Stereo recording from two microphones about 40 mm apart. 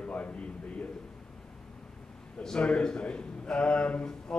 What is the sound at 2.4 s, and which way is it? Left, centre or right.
A man's voice, left.